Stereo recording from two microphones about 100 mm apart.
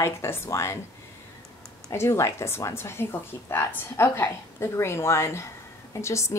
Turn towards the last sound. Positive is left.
turn(degrees=30)  # may be behind; listen again after turning